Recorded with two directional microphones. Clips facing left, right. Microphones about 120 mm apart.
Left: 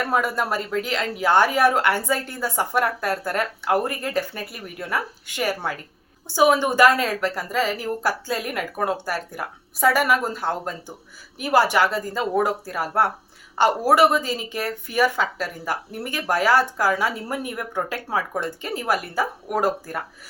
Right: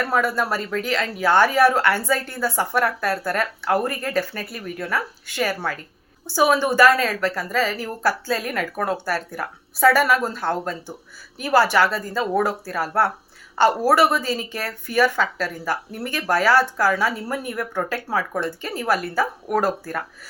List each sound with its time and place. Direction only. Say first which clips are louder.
0.1 s speech: right 1 dB; 15° left (ahead or behind)